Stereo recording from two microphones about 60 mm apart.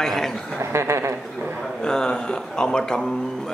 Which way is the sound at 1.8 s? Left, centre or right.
Centre.